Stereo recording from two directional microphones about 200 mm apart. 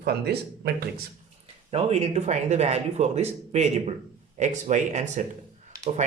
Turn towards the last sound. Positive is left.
turn(degrees=-20)  # may be behind; listen again after turning